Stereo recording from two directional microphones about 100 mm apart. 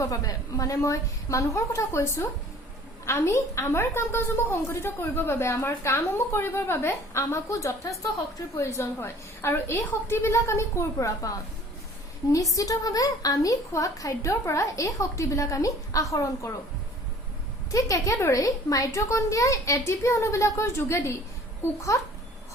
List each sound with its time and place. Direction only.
0.0 s a woman's voice: 35° left (ahead or behind)
12.5 s a woman's voice: 35° left (ahead or behind)
17.7 s a woman's voice: 35° left (ahead or behind)